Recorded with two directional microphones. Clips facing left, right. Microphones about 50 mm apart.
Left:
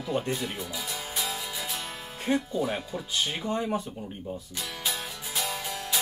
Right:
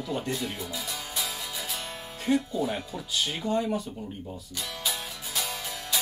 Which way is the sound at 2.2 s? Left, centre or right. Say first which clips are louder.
Right 1 dB; left.